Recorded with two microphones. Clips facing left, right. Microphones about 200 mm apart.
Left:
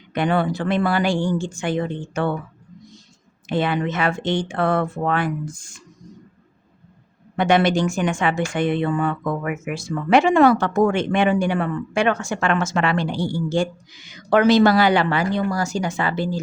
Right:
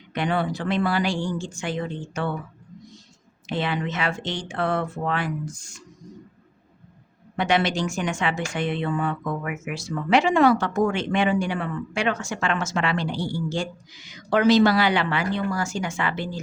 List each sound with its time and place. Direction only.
0.1 s speech: 50° left (ahead or behind)
3.5 s speech: 50° left (ahead or behind)
7.3 s speech: 50° left (ahead or behind); by 16.4 s 35° left (ahead or behind)